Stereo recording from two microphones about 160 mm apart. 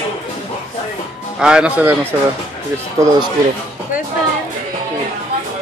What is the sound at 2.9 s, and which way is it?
Speech, 20° right (ahead or behind).